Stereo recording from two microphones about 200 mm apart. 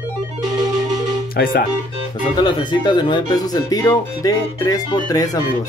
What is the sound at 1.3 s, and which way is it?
Speech, 45° left (ahead or behind).